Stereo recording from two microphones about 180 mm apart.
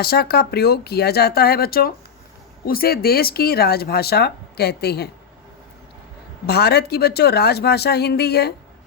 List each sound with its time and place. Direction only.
0.0 s speech: 60° left (ahead or behind)
6.4 s speech: 65° left (ahead or behind)